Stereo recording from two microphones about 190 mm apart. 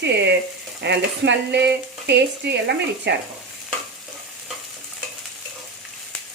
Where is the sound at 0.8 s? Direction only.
65° right (ahead or behind).